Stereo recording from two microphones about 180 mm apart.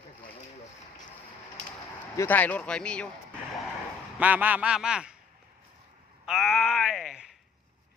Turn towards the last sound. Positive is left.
turn(degrees=0)  # may be behind; listen again after turning